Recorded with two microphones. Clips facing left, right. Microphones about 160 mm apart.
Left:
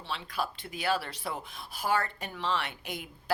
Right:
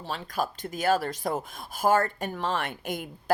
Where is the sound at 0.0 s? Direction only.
40° right (ahead or behind).